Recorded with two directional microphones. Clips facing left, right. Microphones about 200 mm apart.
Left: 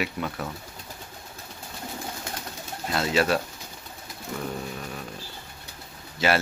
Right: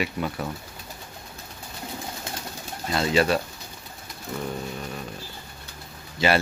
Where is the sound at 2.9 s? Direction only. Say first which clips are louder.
Right 2 dB; centre (ahead or behind).